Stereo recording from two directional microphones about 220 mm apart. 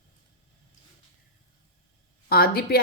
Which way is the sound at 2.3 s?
45° left (ahead or behind).